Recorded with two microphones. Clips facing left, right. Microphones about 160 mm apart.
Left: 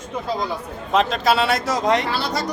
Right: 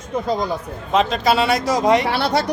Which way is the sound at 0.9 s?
Centre (ahead or behind).